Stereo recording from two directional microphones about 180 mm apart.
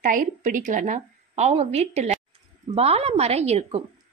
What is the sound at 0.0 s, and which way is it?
A woman's voice, 45° right (ahead or behind).